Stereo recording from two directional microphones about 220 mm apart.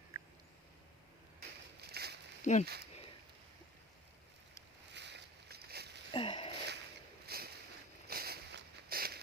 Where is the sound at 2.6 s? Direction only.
45° right (ahead or behind).